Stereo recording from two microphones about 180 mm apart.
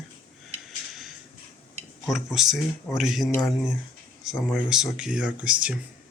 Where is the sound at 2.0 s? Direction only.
Centre (ahead or behind).